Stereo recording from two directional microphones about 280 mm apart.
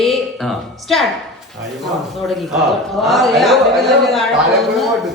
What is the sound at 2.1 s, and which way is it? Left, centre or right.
A man's voice, centre.